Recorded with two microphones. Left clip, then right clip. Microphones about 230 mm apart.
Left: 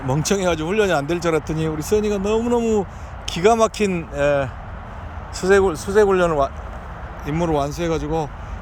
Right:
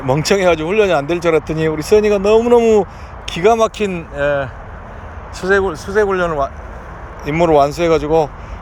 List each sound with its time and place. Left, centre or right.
0.0 s speech: centre; by 6.5 s left
7.3 s speech: centre